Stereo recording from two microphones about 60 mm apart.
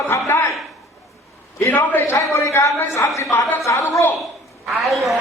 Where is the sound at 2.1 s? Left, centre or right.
Left.